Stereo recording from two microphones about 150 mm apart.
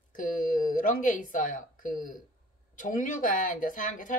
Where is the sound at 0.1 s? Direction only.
60° left (ahead or behind).